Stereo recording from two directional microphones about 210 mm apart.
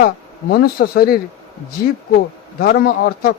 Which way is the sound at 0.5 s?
45° left (ahead or behind).